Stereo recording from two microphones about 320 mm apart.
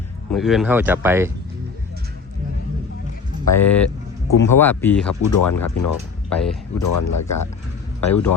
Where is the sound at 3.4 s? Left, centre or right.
Centre.